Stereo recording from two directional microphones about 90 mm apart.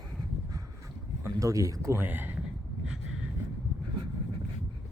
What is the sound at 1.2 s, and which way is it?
Speech, 35° right (ahead or behind).